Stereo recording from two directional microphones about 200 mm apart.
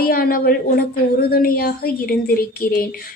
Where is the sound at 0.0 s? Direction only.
50° left (ahead or behind).